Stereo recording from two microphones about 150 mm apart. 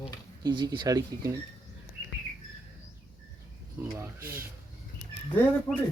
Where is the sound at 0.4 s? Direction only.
30° right (ahead or behind).